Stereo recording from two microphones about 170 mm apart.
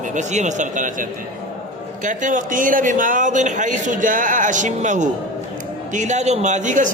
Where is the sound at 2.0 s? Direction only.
50° right (ahead or behind).